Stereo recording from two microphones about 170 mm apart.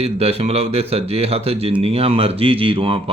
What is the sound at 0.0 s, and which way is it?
Speech, 35° right (ahead or behind).